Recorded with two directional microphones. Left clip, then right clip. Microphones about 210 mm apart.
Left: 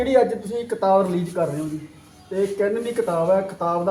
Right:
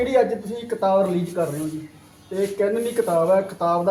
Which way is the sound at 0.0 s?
30° left (ahead or behind).